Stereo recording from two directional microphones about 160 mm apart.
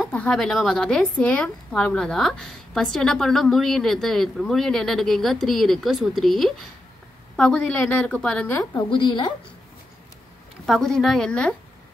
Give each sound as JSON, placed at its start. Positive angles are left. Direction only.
{"t": 0.1, "sound": "a woman's voice", "side_deg": 5}
{"t": 8.5, "sound": "a woman's voice", "side_deg": 30}
{"t": 10.7, "sound": "a woman's voice", "side_deg": 0}